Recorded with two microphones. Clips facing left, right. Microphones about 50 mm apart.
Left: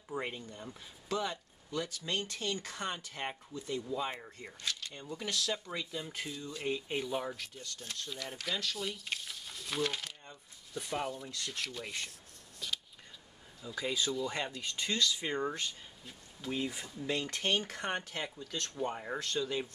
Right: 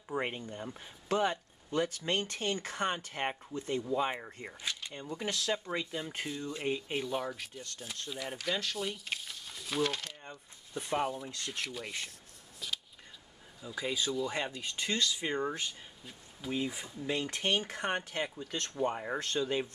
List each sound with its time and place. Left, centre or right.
0.1 s speech: right
6.9 s speech: centre
7.3 s speech: centre
10.3 s speech: right
11.7 s speech: centre
12.5 s a sound: centre
13.6 s speech: centre
19.1 s speech: right